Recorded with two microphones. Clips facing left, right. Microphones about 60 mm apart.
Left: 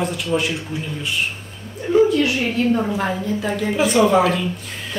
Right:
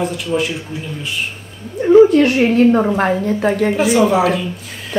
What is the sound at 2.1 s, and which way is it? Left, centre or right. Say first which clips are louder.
A woman's voice: right 7 dB; right.